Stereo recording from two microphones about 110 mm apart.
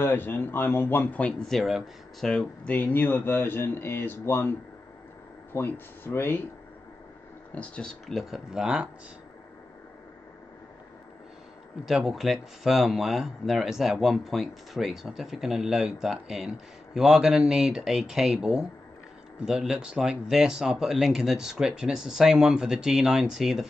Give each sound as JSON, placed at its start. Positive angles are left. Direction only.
{"t": 0.0, "sound": "speech", "side_deg": 20}
{"t": 7.5, "sound": "speech", "side_deg": 10}
{"t": 11.8, "sound": "speech", "side_deg": -5}